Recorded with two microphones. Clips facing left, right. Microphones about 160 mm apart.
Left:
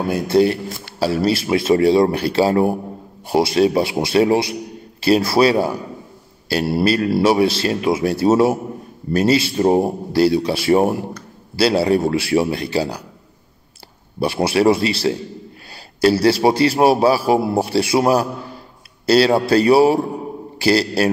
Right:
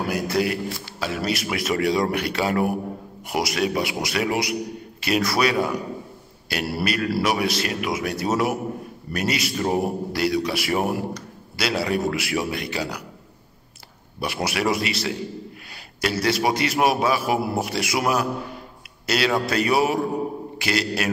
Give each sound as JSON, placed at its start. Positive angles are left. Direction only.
{"t": 0.0, "sound": "a man's voice", "side_deg": 30}
{"t": 14.2, "sound": "a man's voice", "side_deg": 30}